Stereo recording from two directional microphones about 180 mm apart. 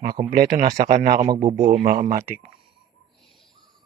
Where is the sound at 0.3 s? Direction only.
45° right (ahead or behind).